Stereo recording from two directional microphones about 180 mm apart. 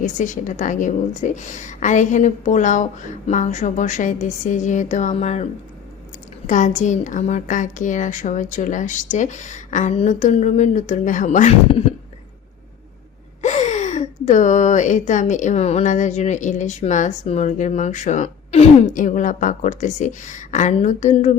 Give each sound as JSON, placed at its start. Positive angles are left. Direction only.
{"t": 0.0, "sound": "a woman's voice", "side_deg": 45}
{"t": 6.5, "sound": "a woman's voice", "side_deg": 45}
{"t": 13.4, "sound": "speech", "side_deg": 40}